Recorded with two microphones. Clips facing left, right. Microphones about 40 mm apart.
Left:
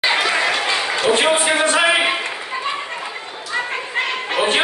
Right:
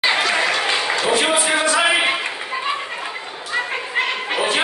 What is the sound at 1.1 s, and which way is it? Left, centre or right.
Speech, left.